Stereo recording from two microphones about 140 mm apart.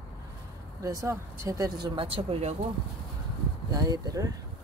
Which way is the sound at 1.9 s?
40° right (ahead or behind).